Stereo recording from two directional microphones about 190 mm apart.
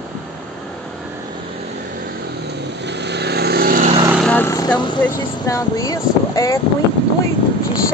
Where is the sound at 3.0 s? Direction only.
60° right (ahead or behind).